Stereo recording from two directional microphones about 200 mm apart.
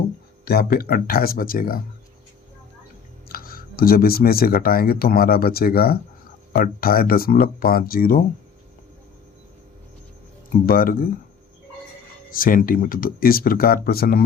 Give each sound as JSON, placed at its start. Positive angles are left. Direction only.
{"t": 0.4, "sound": "speech", "side_deg": 50}
{"t": 3.2, "sound": "speech", "side_deg": 45}
{"t": 10.7, "sound": "speech", "side_deg": 45}
{"t": 12.3, "sound": "speech", "side_deg": 45}